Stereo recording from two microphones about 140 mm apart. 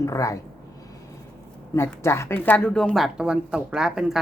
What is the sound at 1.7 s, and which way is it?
Speech, 20° left (ahead or behind).